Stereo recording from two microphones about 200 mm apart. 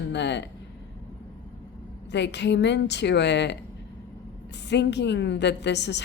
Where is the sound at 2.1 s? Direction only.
60° left (ahead or behind).